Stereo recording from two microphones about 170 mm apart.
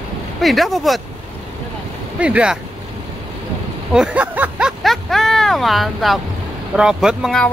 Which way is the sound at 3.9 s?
5° right (ahead or behind).